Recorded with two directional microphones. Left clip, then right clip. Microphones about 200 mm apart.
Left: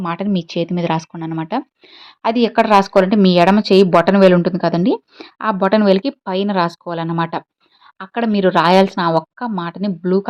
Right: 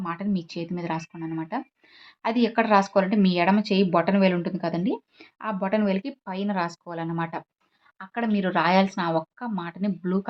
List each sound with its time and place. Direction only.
0.0 s speech: 40° left (ahead or behind)